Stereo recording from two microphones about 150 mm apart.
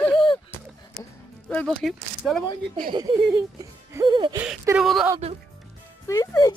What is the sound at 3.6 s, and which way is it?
Speech, 20° right (ahead or behind).